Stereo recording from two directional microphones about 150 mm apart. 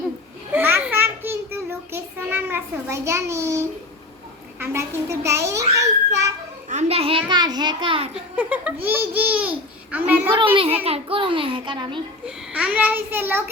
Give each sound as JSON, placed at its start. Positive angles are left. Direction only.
{"t": 0.5, "sound": "a sound", "side_deg": -15}
{"t": 1.9, "sound": "a child's voice", "side_deg": -15}
{"t": 6.7, "sound": "a child's voice", "side_deg": -45}
{"t": 8.1, "sound": "speech", "side_deg": -10}
{"t": 10.3, "sound": "a child's voice", "side_deg": -35}
{"t": 12.2, "sound": "speech", "side_deg": -5}